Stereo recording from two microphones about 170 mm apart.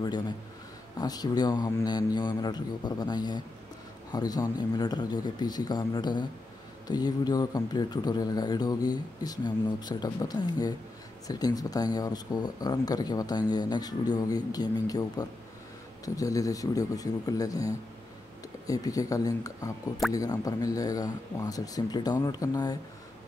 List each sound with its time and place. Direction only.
0.9 s speech: 25° left (ahead or behind)